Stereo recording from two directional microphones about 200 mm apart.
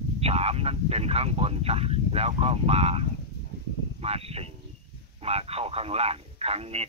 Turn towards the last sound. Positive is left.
turn(degrees=-30)  # may be behind; listen again after turning